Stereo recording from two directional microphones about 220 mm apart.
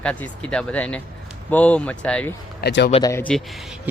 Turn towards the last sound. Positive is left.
turn(degrees=10)  # may be behind; listen again after turning